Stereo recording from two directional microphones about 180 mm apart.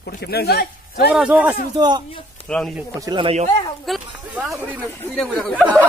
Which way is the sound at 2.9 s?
25° right (ahead or behind).